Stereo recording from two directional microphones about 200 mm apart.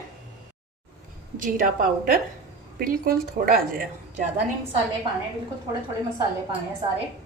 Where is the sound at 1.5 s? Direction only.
45° right (ahead or behind).